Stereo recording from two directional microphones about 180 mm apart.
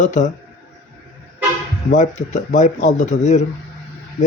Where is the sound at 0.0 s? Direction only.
45° left (ahead or behind).